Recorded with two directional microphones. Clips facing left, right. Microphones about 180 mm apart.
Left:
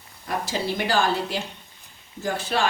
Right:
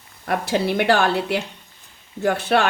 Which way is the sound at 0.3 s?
60° right (ahead or behind).